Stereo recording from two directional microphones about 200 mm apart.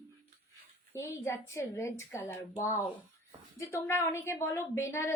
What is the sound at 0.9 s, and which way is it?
A woman's voice, 15° left (ahead or behind).